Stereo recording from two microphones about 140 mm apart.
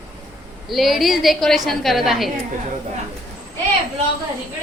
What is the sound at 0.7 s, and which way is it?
A woman's voice, centre (ahead or behind).